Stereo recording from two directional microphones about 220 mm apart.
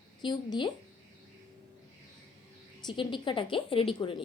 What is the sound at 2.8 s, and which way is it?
A woman's voice, 20° left (ahead or behind).